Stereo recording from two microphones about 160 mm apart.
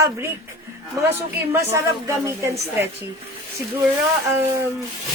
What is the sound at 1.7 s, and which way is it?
Speech, 20° right (ahead or behind).